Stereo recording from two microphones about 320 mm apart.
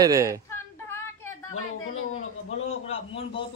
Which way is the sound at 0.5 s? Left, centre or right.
Centre.